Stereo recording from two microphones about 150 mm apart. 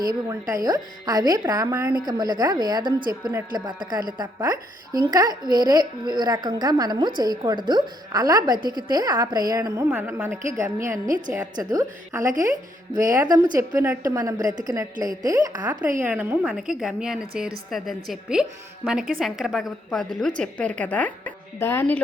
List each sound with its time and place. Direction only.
0.0 s a woman's voice: 25° right (ahead or behind)
9.9 s a woman's voice: 10° right (ahead or behind)
11.0 s a woman's voice: 60° right (ahead or behind)
11.7 s a woman's voice: 25° right (ahead or behind)
16.0 s a woman's voice: 10° right (ahead or behind); by 22.0 s 15° left (ahead or behind)